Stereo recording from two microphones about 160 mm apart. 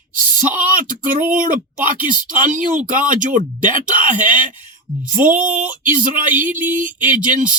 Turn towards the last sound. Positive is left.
turn(degrees=-55)  # may be behind; listen again after turning